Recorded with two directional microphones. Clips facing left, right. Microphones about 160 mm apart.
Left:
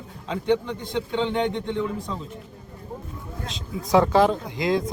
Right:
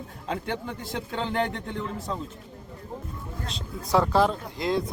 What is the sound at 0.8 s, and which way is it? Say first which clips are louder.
Speech: left 6 dB; 5° right (ahead or behind).